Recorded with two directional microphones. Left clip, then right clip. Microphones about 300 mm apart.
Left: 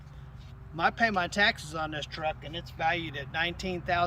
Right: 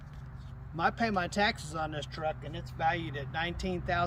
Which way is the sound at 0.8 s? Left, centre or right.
Centre.